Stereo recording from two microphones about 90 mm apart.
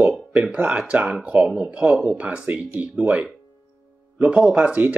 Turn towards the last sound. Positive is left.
turn(degrees=-15)  # may be behind; listen again after turning